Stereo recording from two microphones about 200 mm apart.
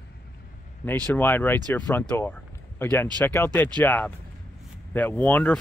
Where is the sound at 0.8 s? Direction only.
10° left (ahead or behind).